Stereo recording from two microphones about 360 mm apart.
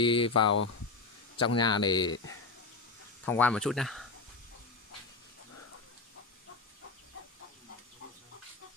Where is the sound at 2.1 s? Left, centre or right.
Left.